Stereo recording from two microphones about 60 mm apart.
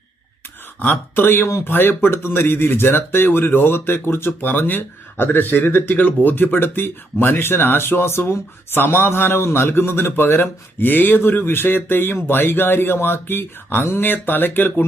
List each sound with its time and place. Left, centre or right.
0.8 s speech: left